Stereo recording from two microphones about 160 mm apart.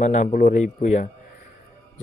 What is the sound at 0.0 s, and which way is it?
Speech, 50° left (ahead or behind).